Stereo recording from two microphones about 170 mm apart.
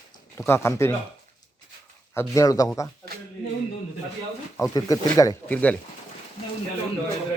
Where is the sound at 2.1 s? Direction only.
15° left (ahead or behind).